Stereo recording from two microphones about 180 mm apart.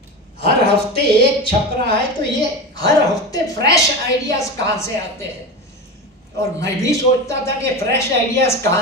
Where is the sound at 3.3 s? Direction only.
20° left (ahead or behind).